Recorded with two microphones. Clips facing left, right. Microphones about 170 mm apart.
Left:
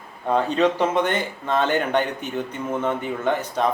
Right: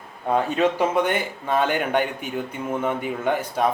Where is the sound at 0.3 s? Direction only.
10° right (ahead or behind).